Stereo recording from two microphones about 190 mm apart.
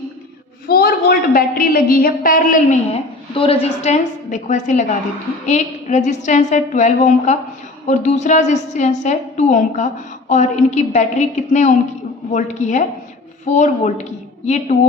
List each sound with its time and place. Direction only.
0.7 s a woman's voice: 55° left (ahead or behind)
2.9 s a woman's voice: 30° left (ahead or behind)